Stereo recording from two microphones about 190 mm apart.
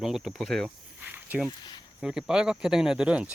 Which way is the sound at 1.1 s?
10° right (ahead or behind).